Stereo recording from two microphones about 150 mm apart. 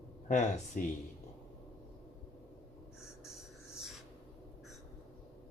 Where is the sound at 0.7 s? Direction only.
60° left (ahead or behind).